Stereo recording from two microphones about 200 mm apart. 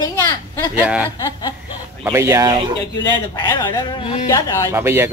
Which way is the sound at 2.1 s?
15° right (ahead or behind).